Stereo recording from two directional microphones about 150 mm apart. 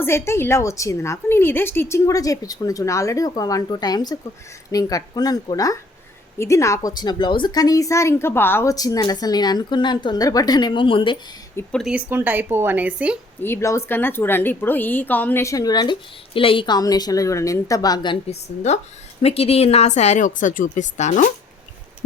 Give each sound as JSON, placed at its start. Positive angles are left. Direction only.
{"t": 0.0, "sound": "a woman's voice", "side_deg": 15}
{"t": 11.8, "sound": "speech", "side_deg": -5}
{"t": 13.4, "sound": "a woman's voice", "side_deg": 15}
{"t": 18.3, "sound": "speech", "side_deg": 50}